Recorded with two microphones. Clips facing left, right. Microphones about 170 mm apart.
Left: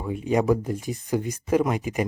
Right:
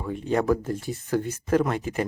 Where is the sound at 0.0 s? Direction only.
10° left (ahead or behind).